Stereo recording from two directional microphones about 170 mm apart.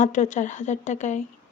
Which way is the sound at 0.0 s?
45° left (ahead or behind).